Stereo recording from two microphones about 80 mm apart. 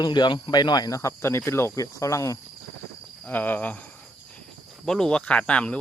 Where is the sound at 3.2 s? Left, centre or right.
Left.